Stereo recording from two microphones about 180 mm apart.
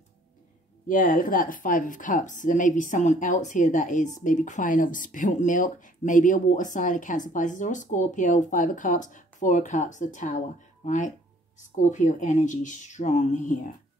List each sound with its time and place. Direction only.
0.8 s speech: 50° left (ahead or behind)